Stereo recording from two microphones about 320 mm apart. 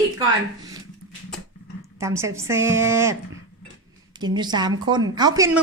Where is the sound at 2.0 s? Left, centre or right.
Centre.